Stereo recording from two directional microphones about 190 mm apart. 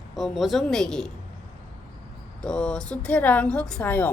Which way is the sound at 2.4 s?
5° left (ahead or behind).